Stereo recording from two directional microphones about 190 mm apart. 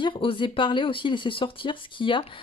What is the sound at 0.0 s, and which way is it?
Speech, 25° left (ahead or behind).